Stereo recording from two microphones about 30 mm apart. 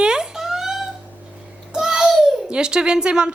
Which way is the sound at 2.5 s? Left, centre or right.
Right.